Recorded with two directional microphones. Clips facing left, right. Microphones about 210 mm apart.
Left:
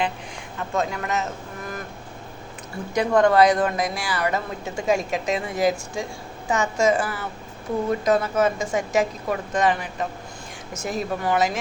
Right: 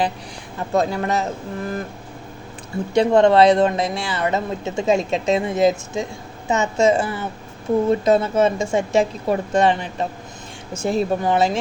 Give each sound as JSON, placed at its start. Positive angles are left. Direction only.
{"t": 0.7, "sound": "speech", "side_deg": -35}
{"t": 2.9, "sound": "speech", "side_deg": -25}